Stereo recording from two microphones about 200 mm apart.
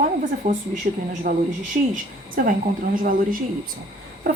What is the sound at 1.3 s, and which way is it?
A woman's voice, 45° right (ahead or behind).